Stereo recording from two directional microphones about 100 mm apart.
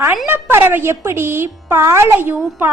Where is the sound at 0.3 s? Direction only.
20° right (ahead or behind).